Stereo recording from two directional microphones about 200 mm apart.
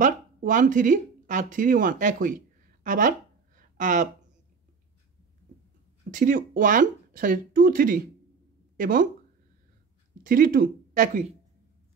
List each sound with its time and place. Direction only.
0.0 s speech: 40° right (ahead or behind)
6.1 s speech: 45° right (ahead or behind)
10.2 s speech: 45° right (ahead or behind)